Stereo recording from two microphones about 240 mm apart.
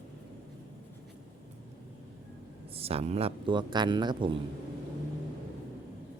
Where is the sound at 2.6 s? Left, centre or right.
Right.